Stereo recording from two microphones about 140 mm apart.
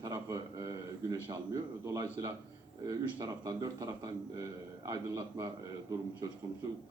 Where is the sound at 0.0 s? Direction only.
25° right (ahead or behind).